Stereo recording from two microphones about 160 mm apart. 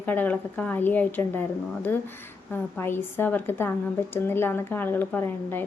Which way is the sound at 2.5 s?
15° left (ahead or behind).